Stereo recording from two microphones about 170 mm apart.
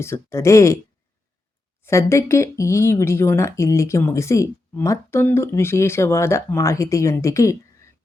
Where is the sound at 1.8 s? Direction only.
15° left (ahead or behind).